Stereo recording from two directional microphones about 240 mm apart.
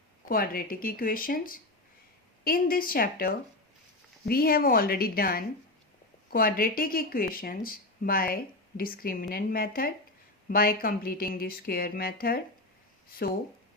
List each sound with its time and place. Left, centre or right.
0.3 s speech: left